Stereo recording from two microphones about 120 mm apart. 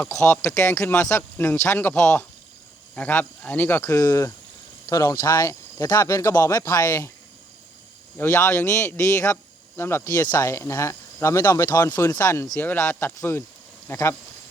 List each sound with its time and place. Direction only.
0.1 s speech: 25° left (ahead or behind)
8.2 s speech: 20° left (ahead or behind)
9.2 s cricket: 20° left (ahead or behind)
10.3 s speech: 25° left (ahead or behind)
12.5 s speech: 15° left (ahead or behind)